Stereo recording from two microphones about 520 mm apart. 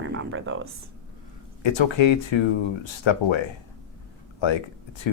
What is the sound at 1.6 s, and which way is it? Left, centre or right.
Speech, left.